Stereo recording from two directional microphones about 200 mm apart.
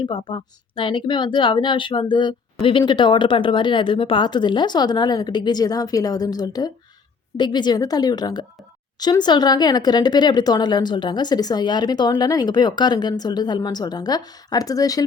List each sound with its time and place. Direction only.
0.0 s speech: 25° left (ahead or behind)